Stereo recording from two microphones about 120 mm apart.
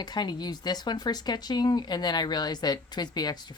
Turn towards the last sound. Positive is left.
turn(degrees=35)  # may be behind; listen again after turning